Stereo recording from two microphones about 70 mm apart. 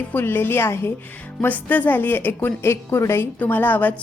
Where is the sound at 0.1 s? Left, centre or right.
Left.